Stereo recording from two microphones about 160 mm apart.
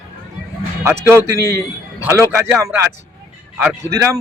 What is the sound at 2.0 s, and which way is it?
Speech, 15° right (ahead or behind).